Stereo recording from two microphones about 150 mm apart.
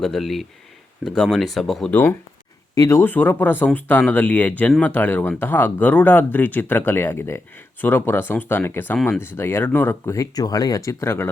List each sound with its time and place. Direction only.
0.0 s speech: centre (ahead or behind)
2.7 s speech: 20° left (ahead or behind)